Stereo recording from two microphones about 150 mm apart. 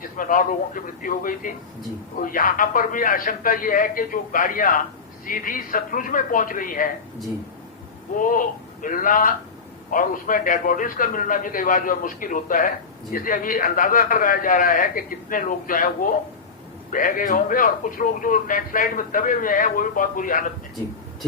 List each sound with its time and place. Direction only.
0.2 s a man's voice: 65° left (ahead or behind)
8.2 s a man's voice: 65° left (ahead or behind)